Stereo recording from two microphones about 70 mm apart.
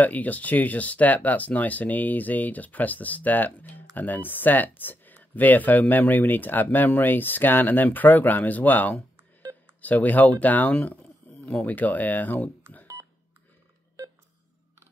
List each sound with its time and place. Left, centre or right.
0.0 s speech: left